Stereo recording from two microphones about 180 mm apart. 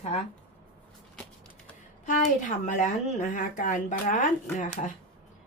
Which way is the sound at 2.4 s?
40° left (ahead or behind).